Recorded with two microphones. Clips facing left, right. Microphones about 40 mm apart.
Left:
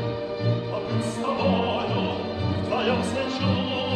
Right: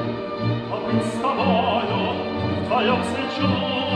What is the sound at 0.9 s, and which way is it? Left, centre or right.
Opera, right.